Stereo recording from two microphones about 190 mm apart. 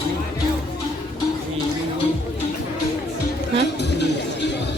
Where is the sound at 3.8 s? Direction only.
65° left (ahead or behind).